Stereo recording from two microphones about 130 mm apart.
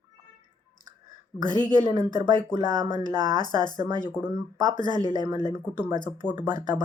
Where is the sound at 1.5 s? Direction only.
35° left (ahead or behind).